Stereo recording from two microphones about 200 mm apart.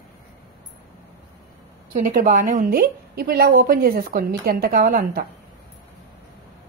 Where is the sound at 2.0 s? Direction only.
40° right (ahead or behind).